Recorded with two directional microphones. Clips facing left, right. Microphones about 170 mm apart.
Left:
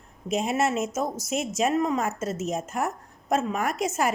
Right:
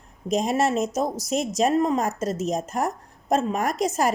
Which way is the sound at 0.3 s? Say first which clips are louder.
Right 3 dB; 35° right (ahead or behind).